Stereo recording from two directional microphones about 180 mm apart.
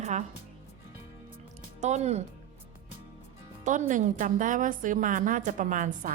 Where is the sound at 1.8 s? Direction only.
40° right (ahead or behind).